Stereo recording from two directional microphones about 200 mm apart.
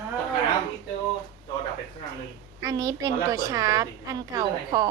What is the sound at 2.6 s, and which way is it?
A woman's voice, 15° right (ahead or behind).